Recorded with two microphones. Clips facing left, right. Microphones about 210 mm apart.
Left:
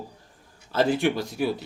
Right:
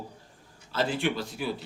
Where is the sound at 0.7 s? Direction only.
45° left (ahead or behind).